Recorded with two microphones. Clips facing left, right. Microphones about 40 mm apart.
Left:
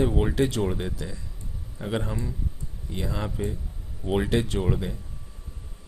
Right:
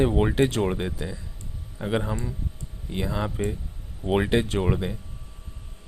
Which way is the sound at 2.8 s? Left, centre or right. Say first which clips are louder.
Right 3 dB; right.